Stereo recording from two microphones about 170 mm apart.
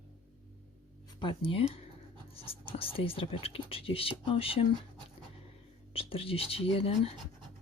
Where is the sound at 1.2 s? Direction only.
30° left (ahead or behind).